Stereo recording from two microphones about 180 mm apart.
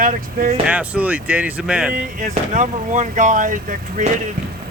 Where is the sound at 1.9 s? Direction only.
50° right (ahead or behind).